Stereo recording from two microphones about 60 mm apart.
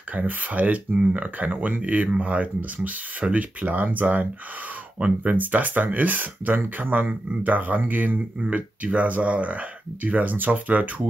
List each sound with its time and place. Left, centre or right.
0.1 s speech: right